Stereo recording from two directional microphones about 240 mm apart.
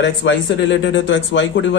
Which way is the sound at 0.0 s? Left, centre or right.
Left.